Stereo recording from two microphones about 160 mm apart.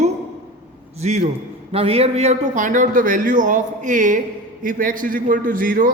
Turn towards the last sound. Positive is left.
turn(degrees=-60)  # may be behind; listen again after turning